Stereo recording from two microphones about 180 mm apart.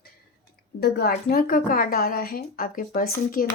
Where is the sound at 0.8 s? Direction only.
60° left (ahead or behind).